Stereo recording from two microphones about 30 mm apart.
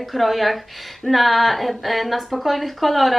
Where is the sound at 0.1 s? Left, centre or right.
Centre.